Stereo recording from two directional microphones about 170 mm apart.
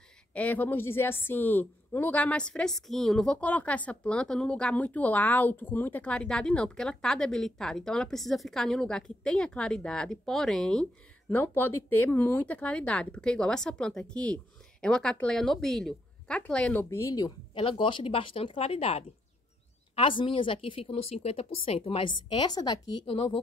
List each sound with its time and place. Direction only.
0.3 s a woman's voice: 10° left (ahead or behind); by 23.4 s 35° left (ahead or behind)